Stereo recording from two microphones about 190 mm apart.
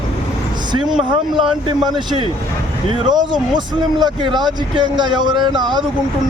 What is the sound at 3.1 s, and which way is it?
Speech, 20° right (ahead or behind).